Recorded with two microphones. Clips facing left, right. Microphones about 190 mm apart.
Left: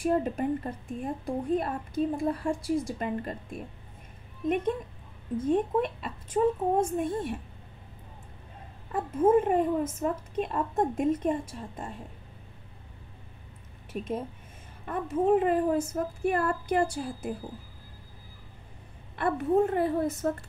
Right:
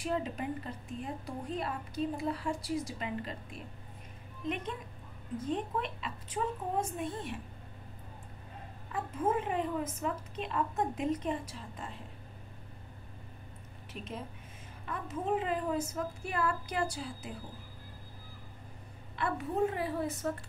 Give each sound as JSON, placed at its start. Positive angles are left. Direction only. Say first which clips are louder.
{"t": 0.0, "sound": "a woman's voice", "louder": "left 8 dB", "side_deg": 50}
{"t": 5.5, "sound": "a woman's voice", "louder": "left 9 dB", "side_deg": 50}
{"t": 8.9, "sound": "a woman's voice", "louder": "left 10 dB", "side_deg": 45}
{"t": 13.9, "sound": "a woman's voice", "louder": "left 9 dB", "side_deg": 50}
{"t": 19.1, "sound": "a woman's voice", "louder": "left 8 dB", "side_deg": 55}